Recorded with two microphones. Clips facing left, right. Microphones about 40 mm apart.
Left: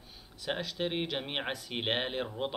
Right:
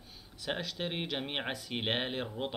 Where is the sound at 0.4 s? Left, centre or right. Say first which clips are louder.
Left 2 dB; centre.